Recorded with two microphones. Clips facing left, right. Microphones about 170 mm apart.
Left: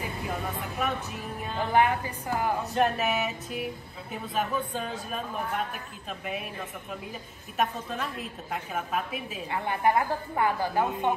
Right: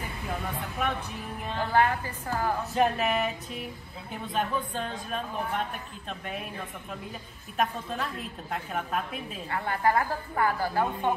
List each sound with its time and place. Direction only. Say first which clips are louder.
0.6 s a woman's voice: even; centre (ahead or behind)
1.7 s a woman's voice: left 1 dB; 15° left (ahead or behind)
2.7 s a woman's voice: right 2 dB; centre (ahead or behind)
9.5 s a woman's voice: left 1 dB; 20° left (ahead or behind)